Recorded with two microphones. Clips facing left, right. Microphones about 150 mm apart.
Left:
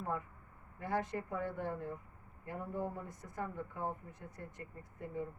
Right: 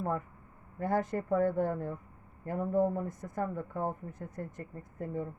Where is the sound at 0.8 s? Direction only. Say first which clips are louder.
Right 6 dB; 45° right (ahead or behind).